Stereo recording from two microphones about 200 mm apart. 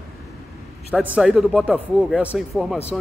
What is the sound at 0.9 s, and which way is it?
A man's voice, 5° right (ahead or behind).